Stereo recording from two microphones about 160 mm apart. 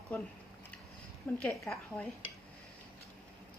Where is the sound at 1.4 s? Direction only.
5° left (ahead or behind).